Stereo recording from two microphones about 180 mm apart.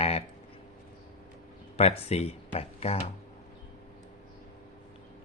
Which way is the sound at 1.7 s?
35° left (ahead or behind).